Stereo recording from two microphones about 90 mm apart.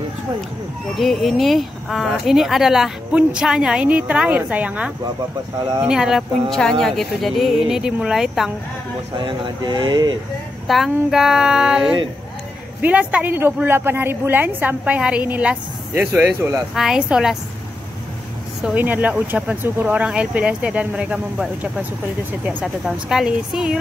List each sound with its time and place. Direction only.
0.9 s speech: centre (ahead or behind)
6.5 s speech: 5° left (ahead or behind)
9.1 s speech: 55° right (ahead or behind)
10.7 s speech: 5° right (ahead or behind)
12.8 s a woman's voice: 15° right (ahead or behind)
16.7 s speech: 5° right (ahead or behind)
18.8 s speech: 20° right (ahead or behind)
22.8 s speech: 5° right (ahead or behind)